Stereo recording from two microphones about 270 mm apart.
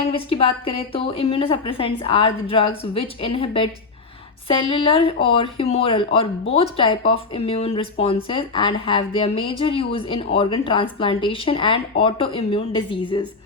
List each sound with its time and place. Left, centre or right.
0.0 s speech: left